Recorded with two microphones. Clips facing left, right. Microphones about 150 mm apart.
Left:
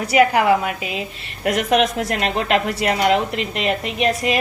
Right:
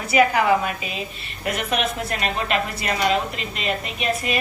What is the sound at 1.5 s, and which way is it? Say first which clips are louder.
A woman's voice: left 7 dB; 90° left.